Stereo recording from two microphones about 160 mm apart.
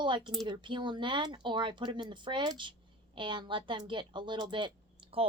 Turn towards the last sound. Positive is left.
turn(degrees=-35)  # may be behind; listen again after turning